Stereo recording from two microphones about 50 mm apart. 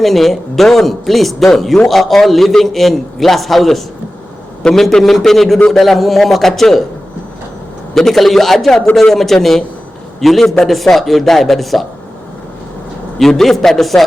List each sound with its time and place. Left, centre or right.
0.0 s a man's voice: centre
7.9 s a man's voice: centre
13.1 s a man's voice: centre